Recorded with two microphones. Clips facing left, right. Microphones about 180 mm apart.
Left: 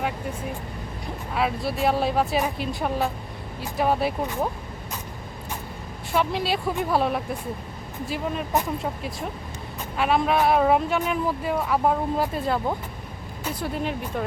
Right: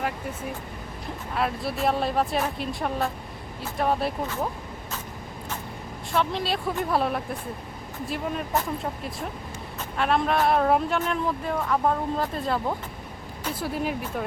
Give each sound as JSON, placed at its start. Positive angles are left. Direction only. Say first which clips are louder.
{"t": 1.3, "sound": "speech", "louder": "left 2 dB", "side_deg": 5}
{"t": 4.2, "sound": "speech", "louder": "left 2 dB", "side_deg": 15}
{"t": 6.1, "sound": "speech", "louder": "left 2 dB", "side_deg": 5}